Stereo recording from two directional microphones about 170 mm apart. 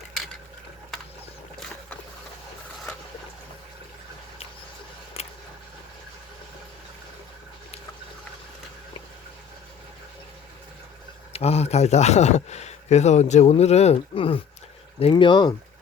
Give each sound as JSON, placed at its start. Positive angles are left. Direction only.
{"t": 5.2, "sound": "vehicle", "side_deg": 35}
{"t": 11.3, "sound": "speech", "side_deg": 35}